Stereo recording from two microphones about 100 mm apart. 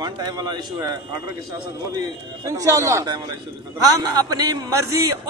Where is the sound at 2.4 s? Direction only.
35° right (ahead or behind).